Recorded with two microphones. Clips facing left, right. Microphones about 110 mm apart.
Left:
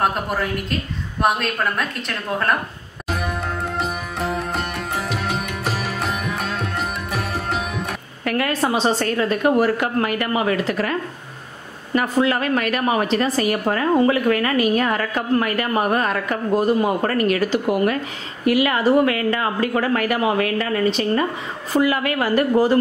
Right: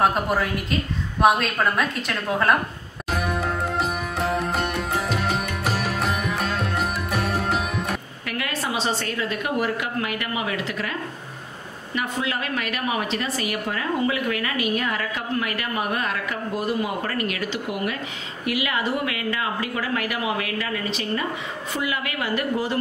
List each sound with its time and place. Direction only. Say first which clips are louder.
0.0 s speech: right 1 dB; centre (ahead or behind)
3.1 s music: even; centre (ahead or behind)
3.8 s sitar: even; centre (ahead or behind)
8.3 s a woman's voice: left 7 dB; 40° left (ahead or behind)